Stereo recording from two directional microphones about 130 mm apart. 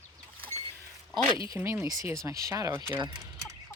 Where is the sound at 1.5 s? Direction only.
20° right (ahead or behind).